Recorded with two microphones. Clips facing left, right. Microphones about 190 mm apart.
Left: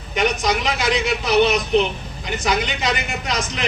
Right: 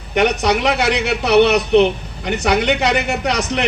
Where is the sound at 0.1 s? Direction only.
65° right (ahead or behind).